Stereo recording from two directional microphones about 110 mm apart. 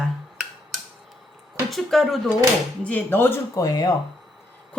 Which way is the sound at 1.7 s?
Centre (ahead or behind).